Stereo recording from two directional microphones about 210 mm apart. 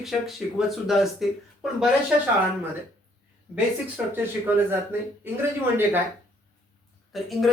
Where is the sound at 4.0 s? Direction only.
5° right (ahead or behind).